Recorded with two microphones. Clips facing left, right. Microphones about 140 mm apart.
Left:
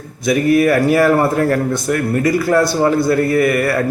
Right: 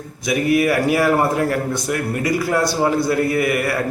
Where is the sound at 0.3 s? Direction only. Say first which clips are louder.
Left 4 dB; 15° right (ahead or behind).